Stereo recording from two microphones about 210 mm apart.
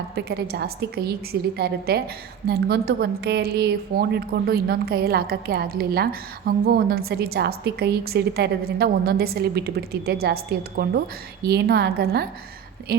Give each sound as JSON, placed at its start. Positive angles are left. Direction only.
{"t": 0.2, "sound": "a woman's voice", "side_deg": -50}